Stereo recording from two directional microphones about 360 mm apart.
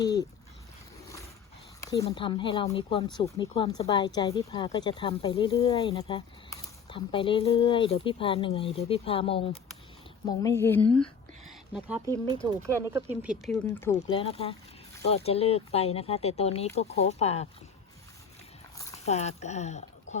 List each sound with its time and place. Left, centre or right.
1.8 s speech: centre
13.3 s speech: centre
18.8 s speech: centre